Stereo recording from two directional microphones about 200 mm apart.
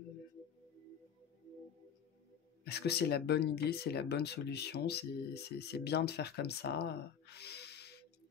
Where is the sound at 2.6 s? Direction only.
55° left (ahead or behind).